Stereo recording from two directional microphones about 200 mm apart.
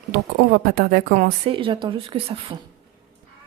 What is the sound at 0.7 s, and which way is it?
Speech, 45° right (ahead or behind).